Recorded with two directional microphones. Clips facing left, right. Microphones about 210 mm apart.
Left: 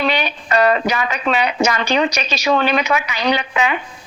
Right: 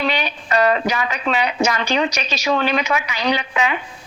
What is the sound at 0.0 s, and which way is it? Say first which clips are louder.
A woman's voice: left 2 dB; 70° left (ahead or behind).